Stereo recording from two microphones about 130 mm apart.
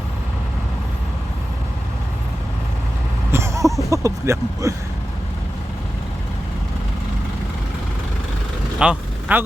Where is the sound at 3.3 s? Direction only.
20° right (ahead or behind).